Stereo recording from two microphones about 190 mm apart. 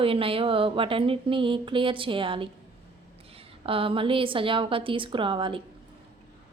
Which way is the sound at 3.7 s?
30° right (ahead or behind).